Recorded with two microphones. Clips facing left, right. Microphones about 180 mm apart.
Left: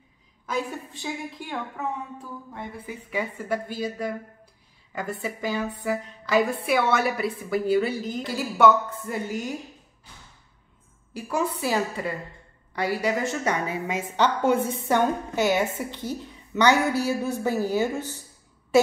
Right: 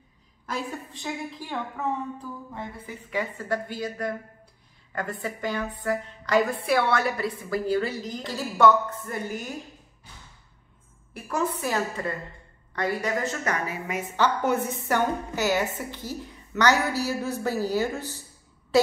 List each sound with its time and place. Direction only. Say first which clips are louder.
0.5 s a woman's voice: left 3 dB; centre (ahead or behind)
2.9 s a woman's voice: left 1 dB; 10° left (ahead or behind)
9.0 s a woman's voice: left 3 dB; 15° left (ahead or behind)
11.2 s a woman's voice: left 1 dB; 10° left (ahead or behind)
13.5 s a woman's voice: left 3 dB; 25° left (ahead or behind)